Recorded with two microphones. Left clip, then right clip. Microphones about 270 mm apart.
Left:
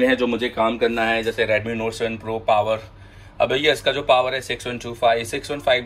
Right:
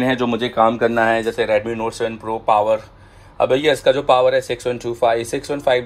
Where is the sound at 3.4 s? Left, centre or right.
Right.